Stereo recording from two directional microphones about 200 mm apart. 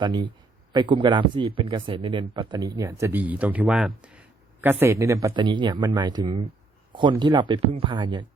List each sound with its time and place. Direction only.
0.0 s speech: 20° right (ahead or behind)